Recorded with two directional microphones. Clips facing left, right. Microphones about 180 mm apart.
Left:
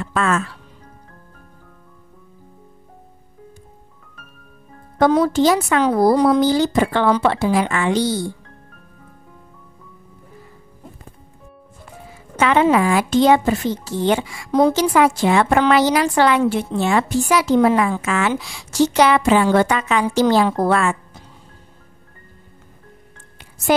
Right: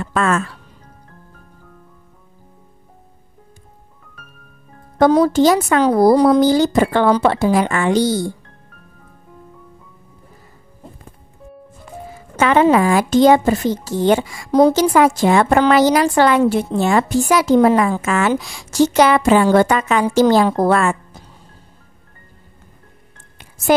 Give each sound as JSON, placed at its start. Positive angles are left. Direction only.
{"t": 0.0, "sound": "speech", "side_deg": -45}
{"t": 4.9, "sound": "speech", "side_deg": -40}
{"t": 12.4, "sound": "speech", "side_deg": -45}